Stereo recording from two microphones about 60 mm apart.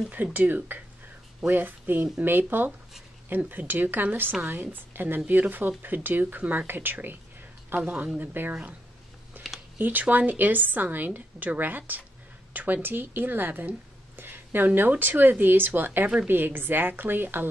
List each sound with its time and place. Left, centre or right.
0.1 s speech: right
9.8 s speech: right